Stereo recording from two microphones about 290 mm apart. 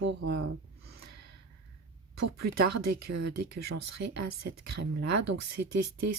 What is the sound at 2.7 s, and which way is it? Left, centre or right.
Speech, right.